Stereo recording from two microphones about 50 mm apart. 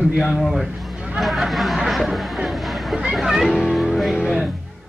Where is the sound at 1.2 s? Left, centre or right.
Centre.